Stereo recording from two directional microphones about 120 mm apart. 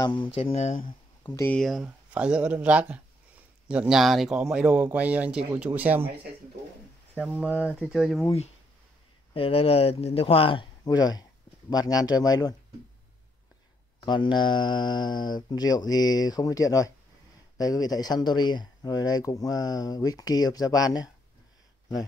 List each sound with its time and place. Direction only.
0.0 s speech: 40° left (ahead or behind)
0.3 s speech: 60° left (ahead or behind)
1.4 s speech: 10° left (ahead or behind)
2.1 s speech: 10° right (ahead or behind)
7.2 s speech: 10° right (ahead or behind)
9.3 s speech: 50° left (ahead or behind); by 12.5 s 30° left (ahead or behind)
14.0 s speech: 40° left (ahead or behind)